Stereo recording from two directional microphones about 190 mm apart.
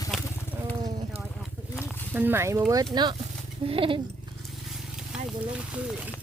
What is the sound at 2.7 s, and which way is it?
Speech, 20° right (ahead or behind).